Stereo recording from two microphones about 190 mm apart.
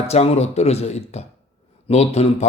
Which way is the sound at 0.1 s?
35° left (ahead or behind).